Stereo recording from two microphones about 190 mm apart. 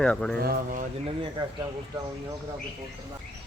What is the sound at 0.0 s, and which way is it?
Speech, 5° left (ahead or behind).